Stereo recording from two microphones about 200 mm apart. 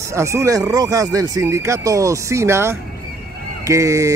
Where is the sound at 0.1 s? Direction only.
15° right (ahead or behind).